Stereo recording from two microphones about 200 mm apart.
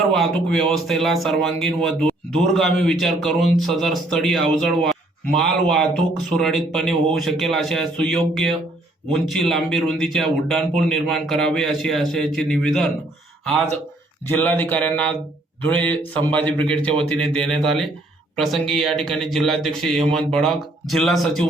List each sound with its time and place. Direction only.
0.0 s a man's voice: centre (ahead or behind)